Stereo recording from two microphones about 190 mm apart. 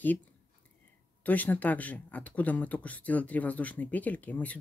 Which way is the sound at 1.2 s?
10° left (ahead or behind).